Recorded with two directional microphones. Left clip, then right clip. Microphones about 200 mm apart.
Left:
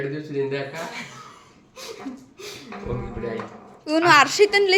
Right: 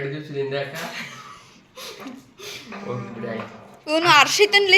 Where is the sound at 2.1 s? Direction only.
20° left (ahead or behind).